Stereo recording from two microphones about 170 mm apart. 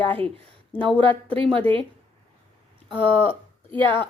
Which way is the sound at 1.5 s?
30° right (ahead or behind).